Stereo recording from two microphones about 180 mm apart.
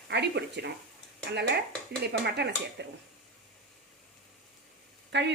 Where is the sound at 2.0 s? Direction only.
70° right (ahead or behind).